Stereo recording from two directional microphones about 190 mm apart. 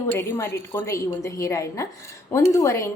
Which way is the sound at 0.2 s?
10° left (ahead or behind).